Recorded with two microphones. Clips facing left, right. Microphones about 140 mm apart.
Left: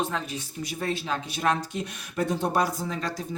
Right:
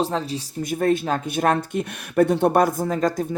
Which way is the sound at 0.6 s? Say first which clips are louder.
Right 10 dB; 50° right (ahead or behind).